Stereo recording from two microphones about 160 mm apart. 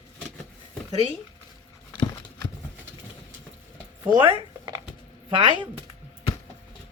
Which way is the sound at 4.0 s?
30° right (ahead or behind).